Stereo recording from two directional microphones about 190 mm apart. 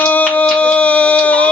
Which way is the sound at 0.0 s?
10° left (ahead or behind).